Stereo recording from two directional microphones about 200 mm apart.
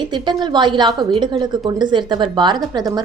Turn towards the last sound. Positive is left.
turn(degrees=-20)  # may be behind; listen again after turning